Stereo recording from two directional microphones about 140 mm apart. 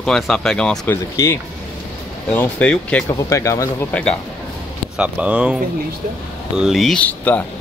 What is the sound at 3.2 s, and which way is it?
Speech, 20° left (ahead or behind).